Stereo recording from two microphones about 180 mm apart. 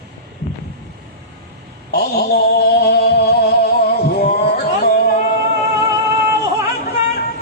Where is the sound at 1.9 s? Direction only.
60° left (ahead or behind).